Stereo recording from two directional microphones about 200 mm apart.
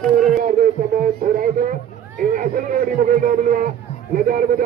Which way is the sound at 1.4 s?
45° right (ahead or behind).